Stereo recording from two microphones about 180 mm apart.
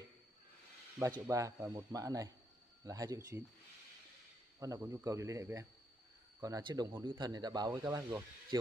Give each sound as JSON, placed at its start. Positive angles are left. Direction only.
{"t": 1.2, "sound": "speech", "side_deg": -15}
{"t": 4.6, "sound": "speech", "side_deg": -20}